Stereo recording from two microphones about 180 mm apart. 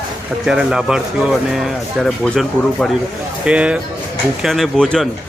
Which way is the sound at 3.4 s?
5° right (ahead or behind).